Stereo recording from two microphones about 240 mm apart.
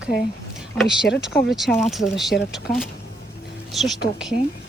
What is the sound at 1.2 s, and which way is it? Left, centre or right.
Speech, centre.